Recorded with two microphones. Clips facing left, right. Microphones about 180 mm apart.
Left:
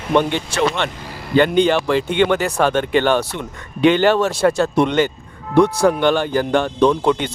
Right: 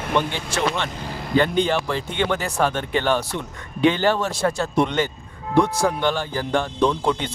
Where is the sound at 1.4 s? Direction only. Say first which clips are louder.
Left 7 dB; 75° left (ahead or behind).